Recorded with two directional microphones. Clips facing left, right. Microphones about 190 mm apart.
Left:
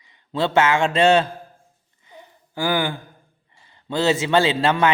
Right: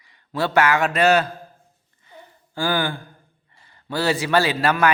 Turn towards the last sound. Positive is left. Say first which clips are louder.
# left 1 dB
turn(degrees=25)  # may be behind; listen again after turning